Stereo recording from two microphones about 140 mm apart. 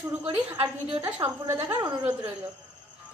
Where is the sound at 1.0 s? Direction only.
20° right (ahead or behind).